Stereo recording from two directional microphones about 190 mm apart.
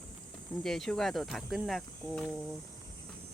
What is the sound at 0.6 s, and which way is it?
Speech, centre (ahead or behind).